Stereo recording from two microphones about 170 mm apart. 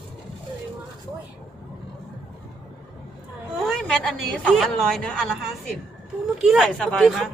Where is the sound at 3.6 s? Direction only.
5° left (ahead or behind).